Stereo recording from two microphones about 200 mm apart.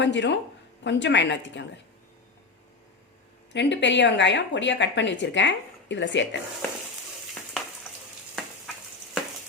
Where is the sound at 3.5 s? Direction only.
60° left (ahead or behind).